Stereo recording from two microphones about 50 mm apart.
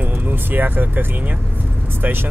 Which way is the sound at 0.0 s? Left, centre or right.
Right.